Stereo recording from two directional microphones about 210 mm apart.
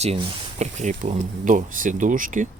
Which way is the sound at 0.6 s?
35° right (ahead or behind).